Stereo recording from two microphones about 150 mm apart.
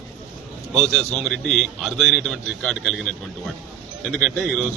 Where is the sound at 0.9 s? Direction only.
5° left (ahead or behind).